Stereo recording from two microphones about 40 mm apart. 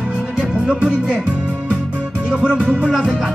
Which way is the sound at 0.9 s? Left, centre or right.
Right.